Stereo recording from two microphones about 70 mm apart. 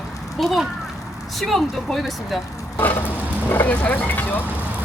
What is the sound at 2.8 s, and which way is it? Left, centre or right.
Vehicle, left.